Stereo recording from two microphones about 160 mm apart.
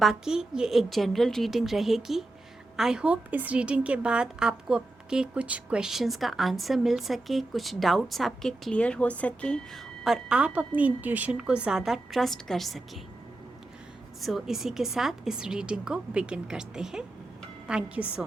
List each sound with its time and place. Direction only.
0.0 s a woman's voice: 5° right (ahead or behind)
14.2 s a woman's voice: centre (ahead or behind)